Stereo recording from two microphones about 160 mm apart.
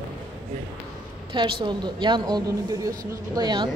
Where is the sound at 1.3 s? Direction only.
30° right (ahead or behind).